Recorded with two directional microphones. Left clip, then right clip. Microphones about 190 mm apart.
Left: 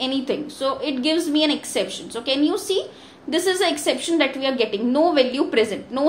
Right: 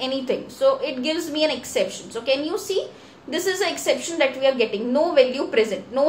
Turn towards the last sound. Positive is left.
turn(degrees=35)  # may be behind; listen again after turning